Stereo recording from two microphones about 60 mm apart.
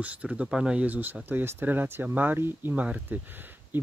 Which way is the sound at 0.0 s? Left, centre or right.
Right.